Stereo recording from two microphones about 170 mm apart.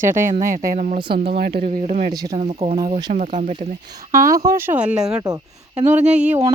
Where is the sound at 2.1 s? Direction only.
20° right (ahead or behind).